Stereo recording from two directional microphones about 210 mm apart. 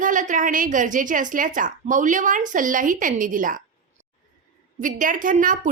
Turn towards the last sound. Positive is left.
turn(degrees=-40)  # may be behind; listen again after turning